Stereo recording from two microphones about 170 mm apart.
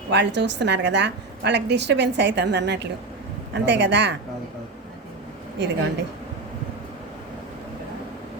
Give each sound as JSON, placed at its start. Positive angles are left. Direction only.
{"t": 0.1, "sound": "a woman's voice", "side_deg": -90}
{"t": 5.5, "sound": "a woman's voice", "side_deg": -90}